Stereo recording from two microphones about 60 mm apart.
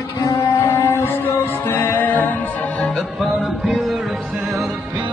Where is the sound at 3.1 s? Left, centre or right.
Centre.